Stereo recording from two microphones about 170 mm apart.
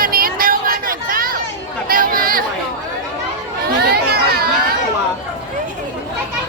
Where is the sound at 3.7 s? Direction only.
70° right (ahead or behind).